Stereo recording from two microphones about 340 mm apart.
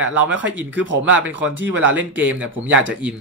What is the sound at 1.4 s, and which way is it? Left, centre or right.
Speech, right.